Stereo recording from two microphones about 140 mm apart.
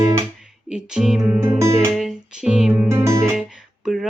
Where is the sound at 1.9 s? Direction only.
Centre (ahead or behind).